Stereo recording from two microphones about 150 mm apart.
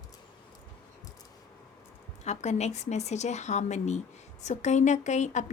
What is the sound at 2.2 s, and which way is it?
Speech, 50° left (ahead or behind).